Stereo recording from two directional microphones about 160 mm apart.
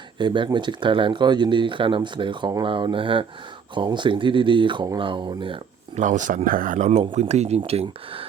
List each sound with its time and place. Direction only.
0.2 s speech: 30° right (ahead or behind)
6.0 s speech: 50° right (ahead or behind)